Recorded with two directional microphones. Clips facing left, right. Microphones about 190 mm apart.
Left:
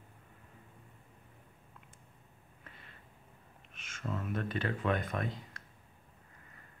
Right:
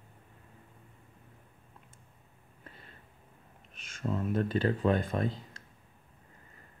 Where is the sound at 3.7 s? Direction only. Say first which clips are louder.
Right 6 dB; 35° right (ahead or behind).